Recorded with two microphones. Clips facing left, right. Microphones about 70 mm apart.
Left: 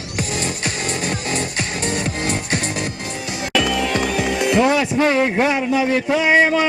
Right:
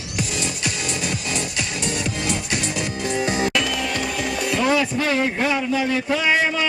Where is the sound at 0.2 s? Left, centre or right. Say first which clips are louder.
Left 2 dB; left.